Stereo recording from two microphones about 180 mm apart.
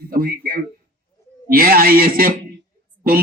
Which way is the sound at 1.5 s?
55° right (ahead or behind).